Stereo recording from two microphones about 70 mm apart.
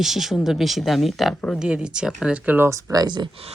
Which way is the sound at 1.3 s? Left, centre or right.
Centre.